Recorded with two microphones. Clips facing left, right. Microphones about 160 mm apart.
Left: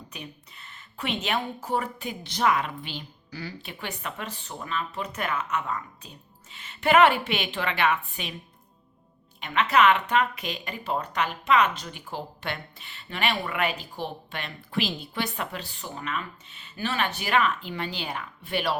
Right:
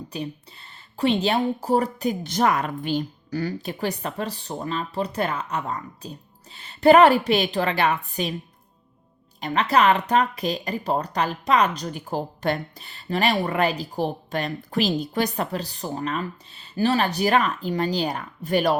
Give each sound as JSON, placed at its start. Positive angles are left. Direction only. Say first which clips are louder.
{"t": 0.1, "sound": "speech", "louder": "right 11 dB", "side_deg": -30}
{"t": 9.4, "sound": "speech", "louder": "right 2 dB", "side_deg": -35}